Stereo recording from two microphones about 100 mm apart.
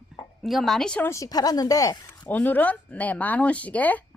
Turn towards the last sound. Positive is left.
turn(degrees=15)  # may be behind; listen again after turning